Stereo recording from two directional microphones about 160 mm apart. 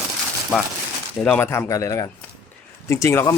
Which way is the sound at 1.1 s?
5° left (ahead or behind).